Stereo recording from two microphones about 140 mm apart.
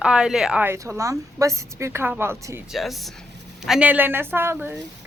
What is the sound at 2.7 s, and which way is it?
A woman's voice, centre (ahead or behind).